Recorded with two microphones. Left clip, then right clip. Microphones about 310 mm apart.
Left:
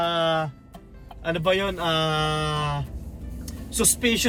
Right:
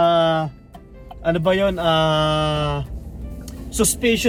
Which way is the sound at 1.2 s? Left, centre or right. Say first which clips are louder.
Right 5 dB; centre.